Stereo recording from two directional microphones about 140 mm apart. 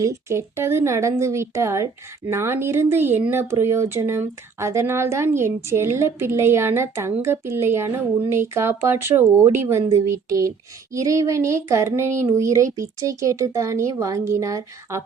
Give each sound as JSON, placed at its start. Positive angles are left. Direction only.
{"t": 0.0, "sound": "speech", "side_deg": -20}